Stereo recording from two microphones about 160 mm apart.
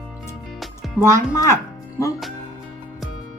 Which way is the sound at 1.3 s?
20° left (ahead or behind).